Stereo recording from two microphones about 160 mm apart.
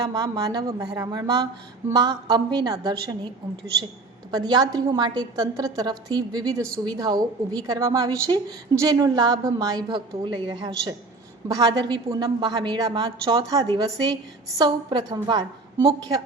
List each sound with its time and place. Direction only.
0.0 s a woman's voice: 25° right (ahead or behind)
4.3 s a woman's voice: 25° right (ahead or behind)